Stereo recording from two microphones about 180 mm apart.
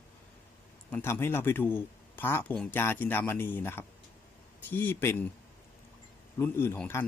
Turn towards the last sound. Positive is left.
turn(degrees=10)  # may be behind; listen again after turning